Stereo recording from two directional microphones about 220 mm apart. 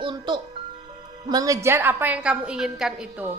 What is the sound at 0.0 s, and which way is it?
Music, 20° right (ahead or behind).